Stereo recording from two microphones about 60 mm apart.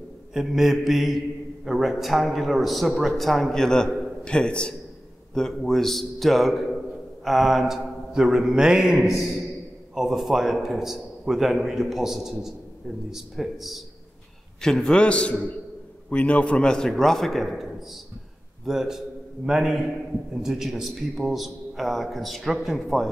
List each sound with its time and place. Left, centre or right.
0.3 s a man's voice: centre
14.6 s a man's voice: centre